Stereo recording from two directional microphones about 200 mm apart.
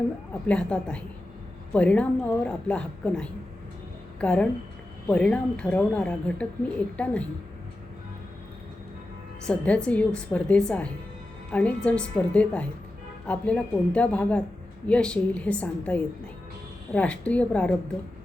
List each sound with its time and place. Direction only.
0.4 s a woman's voice: 5° left (ahead or behind)
9.5 s a woman's voice: 5° left (ahead or behind)